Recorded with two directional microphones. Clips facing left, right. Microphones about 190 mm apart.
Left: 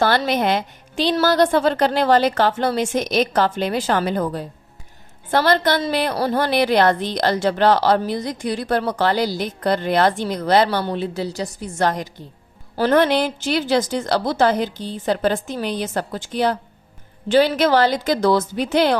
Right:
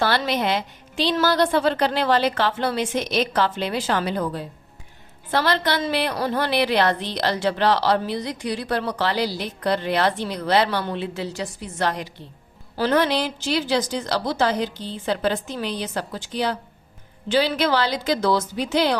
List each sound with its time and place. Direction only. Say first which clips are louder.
0.0 s a woman's voice: left 4 dB; 45° left (ahead or behind)